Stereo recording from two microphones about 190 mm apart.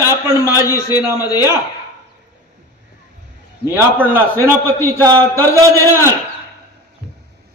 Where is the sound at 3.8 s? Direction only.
10° right (ahead or behind).